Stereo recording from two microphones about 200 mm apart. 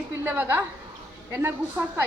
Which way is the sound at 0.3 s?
10° right (ahead or behind).